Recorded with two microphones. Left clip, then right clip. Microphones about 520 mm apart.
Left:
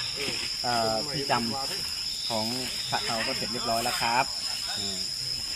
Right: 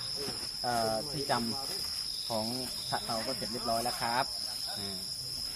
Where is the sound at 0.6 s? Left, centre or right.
Right.